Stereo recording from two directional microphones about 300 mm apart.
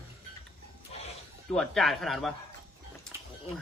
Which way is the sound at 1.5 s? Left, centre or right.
Centre.